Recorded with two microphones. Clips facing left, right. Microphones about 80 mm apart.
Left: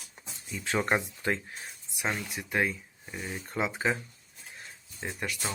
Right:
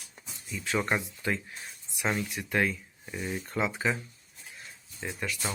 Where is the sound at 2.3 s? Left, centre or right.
Centre.